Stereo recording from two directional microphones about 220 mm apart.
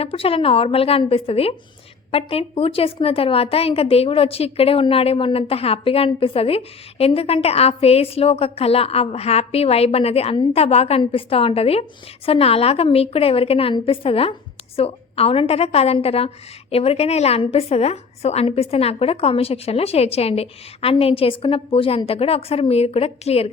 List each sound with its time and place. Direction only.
0.0 s a woman's voice: 25° left (ahead or behind)